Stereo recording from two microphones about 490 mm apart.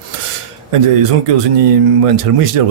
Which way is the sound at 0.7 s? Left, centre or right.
Right.